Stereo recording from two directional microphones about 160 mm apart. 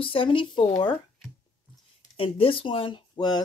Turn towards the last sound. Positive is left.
turn(degrees=25)  # may be behind; listen again after turning